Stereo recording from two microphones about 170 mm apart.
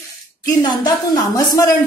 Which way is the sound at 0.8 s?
25° left (ahead or behind).